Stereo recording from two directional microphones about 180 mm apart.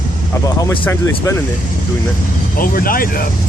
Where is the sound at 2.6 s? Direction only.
55° left (ahead or behind).